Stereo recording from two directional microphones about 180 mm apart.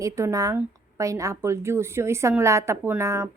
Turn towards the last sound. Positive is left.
turn(degrees=-15)  # may be behind; listen again after turning